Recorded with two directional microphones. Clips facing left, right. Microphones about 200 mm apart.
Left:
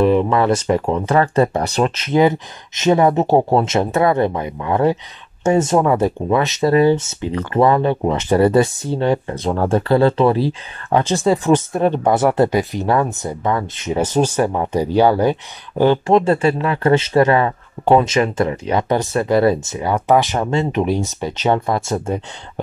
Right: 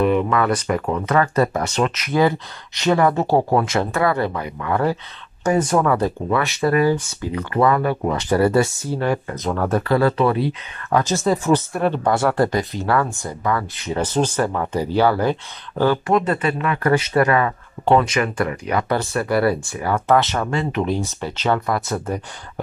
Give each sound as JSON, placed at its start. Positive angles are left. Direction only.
{"t": 0.0, "sound": "speech", "side_deg": 30}
{"t": 11.5, "sound": "speech", "side_deg": 20}
{"t": 13.9, "sound": "speech", "side_deg": 10}